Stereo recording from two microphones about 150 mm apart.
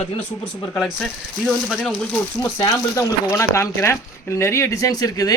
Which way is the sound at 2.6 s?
25° left (ahead or behind).